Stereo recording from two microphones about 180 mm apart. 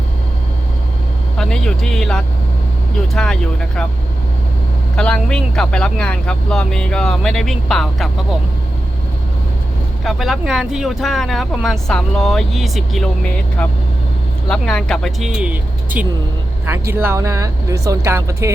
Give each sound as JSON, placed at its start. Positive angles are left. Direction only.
{"t": 1.4, "sound": "speech", "side_deg": 5}
{"t": 4.9, "sound": "speech", "side_deg": 5}
{"t": 10.0, "sound": "speech", "side_deg": 0}